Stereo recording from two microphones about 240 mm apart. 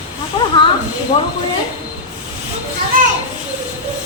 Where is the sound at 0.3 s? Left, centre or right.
Centre.